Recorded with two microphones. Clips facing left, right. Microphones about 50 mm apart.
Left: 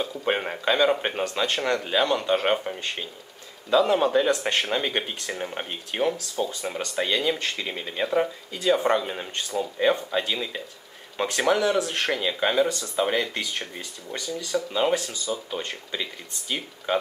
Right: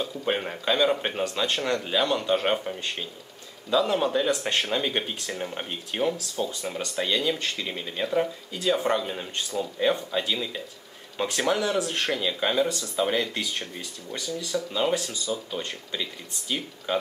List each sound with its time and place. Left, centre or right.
0.0 s speech: centre